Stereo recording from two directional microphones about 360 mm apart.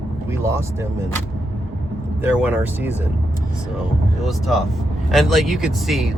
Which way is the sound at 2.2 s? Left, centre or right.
Centre.